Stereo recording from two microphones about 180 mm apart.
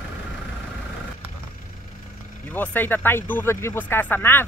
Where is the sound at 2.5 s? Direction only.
10° left (ahead or behind).